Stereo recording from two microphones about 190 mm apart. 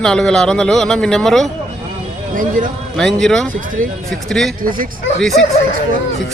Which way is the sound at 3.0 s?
Centre (ahead or behind).